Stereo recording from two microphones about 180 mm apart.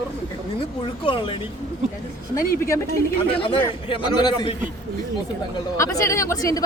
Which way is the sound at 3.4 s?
30° left (ahead or behind).